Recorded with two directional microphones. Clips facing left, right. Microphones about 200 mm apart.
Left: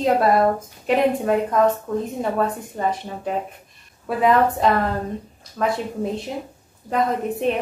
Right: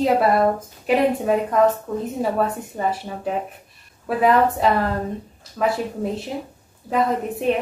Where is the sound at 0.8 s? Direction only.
Centre (ahead or behind).